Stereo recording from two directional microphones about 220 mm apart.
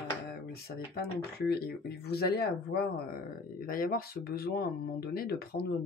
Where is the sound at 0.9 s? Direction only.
45° left (ahead or behind).